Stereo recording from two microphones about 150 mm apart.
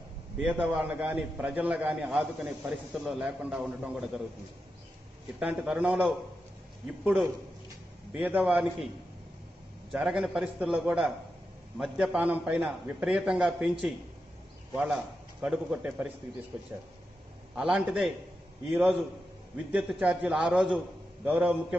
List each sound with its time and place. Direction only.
0.5 s a man's voice: 10° right (ahead or behind)
5.4 s a man's voice: 5° right (ahead or behind)
8.1 s a man's voice: 10° right (ahead or behind)
9.9 s a man's voice: 5° right (ahead or behind)
15.4 s a man's voice: 5° right (ahead or behind)
16.7 s speech: 20° right (ahead or behind)
17.6 s a man's voice: 5° right (ahead or behind)